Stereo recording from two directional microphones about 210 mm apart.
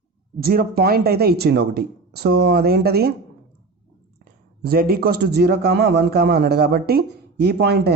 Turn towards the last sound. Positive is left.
turn(degrees=-50)  # may be behind; listen again after turning